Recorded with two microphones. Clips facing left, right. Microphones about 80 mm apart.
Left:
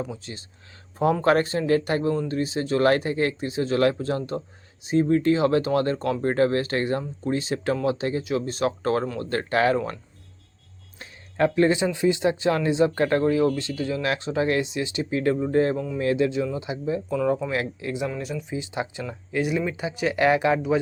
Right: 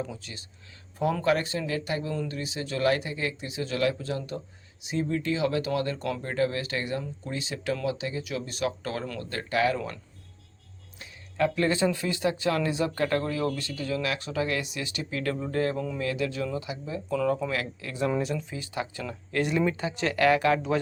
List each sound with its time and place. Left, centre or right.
0.2 s speech: left
11.0 s a sound: left
11.8 s speech: left
17.1 s speech: centre
19.0 s speech: centre